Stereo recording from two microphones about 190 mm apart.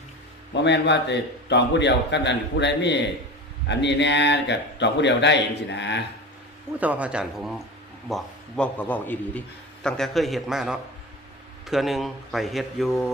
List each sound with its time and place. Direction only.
0.5 s a man's voice: 65° left (ahead or behind)
6.7 s a man's voice: 5° right (ahead or behind)